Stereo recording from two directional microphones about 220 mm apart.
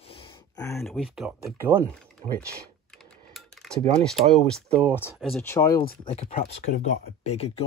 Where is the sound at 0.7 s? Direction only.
Centre (ahead or behind).